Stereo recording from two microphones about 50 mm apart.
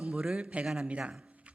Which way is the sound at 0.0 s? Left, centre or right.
Centre.